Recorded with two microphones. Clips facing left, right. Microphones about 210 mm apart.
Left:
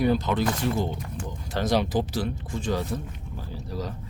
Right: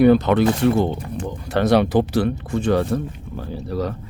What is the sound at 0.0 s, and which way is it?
Speech, 65° right (ahead or behind).